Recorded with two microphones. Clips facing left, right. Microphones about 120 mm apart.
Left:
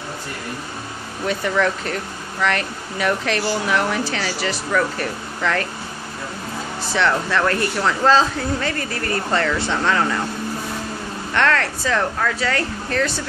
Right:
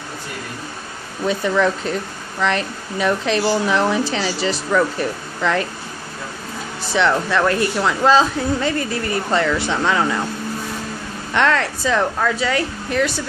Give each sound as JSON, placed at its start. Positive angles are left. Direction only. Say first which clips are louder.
{"t": 1.2, "sound": "speech", "louder": "right 2 dB", "side_deg": -20}
{"t": 6.9, "sound": "a woman's voice", "louder": "right 2 dB", "side_deg": -15}
{"t": 11.3, "sound": "a woman's voice", "louder": "right 2 dB", "side_deg": -15}